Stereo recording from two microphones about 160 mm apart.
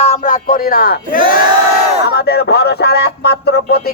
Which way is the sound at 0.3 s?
65° left (ahead or behind).